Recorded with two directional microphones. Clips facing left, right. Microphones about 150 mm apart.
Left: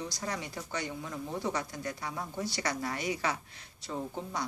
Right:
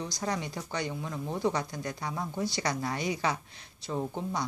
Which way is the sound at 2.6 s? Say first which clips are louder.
Right 1 dB; 35° right (ahead or behind).